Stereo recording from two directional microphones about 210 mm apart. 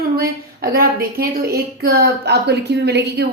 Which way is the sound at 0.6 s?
45° right (ahead or behind).